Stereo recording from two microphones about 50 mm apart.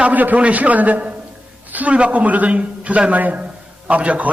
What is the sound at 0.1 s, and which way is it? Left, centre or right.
A man's voice, right.